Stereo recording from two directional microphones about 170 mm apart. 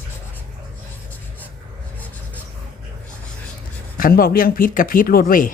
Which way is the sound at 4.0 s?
60° left (ahead or behind).